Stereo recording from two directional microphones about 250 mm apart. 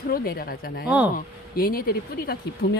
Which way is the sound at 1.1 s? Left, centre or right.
Left.